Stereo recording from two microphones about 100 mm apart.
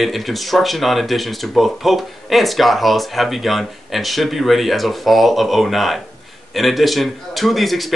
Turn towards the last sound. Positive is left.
turn(degrees=0)  # may be behind; listen again after turning